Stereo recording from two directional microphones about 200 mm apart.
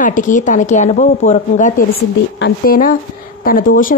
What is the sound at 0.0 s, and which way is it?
A woman's voice, 40° left (ahead or behind).